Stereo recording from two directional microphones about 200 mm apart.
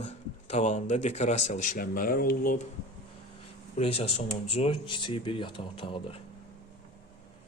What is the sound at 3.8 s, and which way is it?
Speech, 30° left (ahead or behind).